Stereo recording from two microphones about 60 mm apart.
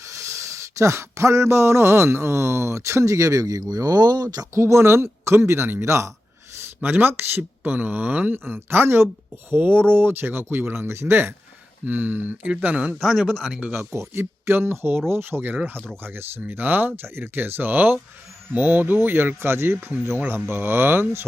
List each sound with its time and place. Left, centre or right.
0.1 s a sound: right
4.5 s speech: right
6.8 s speech: right
13.0 s speech: centre
13.5 s speech: right
13.7 s speech: right